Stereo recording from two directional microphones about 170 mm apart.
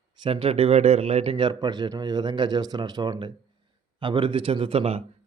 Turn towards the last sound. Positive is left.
turn(degrees=-35)  # may be behind; listen again after turning